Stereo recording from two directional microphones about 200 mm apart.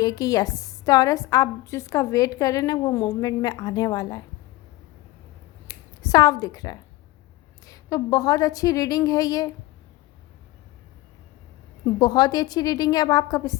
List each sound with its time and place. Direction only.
0.0 s a woman's voice: 20° left (ahead or behind)
6.0 s a woman's voice: 20° left (ahead or behind)
11.9 s a woman's voice: 20° left (ahead or behind)